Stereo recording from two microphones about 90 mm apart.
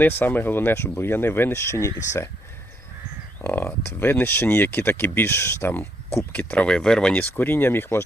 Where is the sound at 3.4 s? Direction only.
20° left (ahead or behind).